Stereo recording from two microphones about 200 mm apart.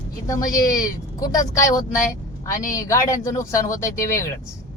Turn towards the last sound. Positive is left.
turn(degrees=15)  # may be behind; listen again after turning